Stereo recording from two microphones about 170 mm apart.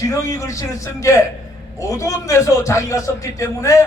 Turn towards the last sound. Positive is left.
turn(degrees=20)  # may be behind; listen again after turning